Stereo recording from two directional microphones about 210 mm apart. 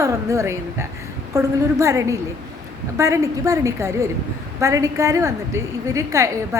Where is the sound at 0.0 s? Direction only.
15° right (ahead or behind).